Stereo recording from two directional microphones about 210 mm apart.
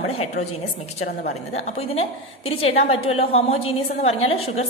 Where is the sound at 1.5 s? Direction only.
30° left (ahead or behind).